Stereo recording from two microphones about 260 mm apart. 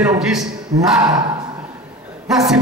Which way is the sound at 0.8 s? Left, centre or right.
Centre.